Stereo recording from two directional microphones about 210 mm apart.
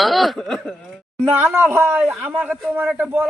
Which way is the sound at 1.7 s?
10° right (ahead or behind).